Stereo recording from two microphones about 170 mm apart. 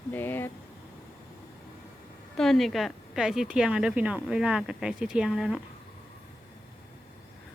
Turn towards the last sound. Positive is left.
turn(degrees=-5)  # may be behind; listen again after turning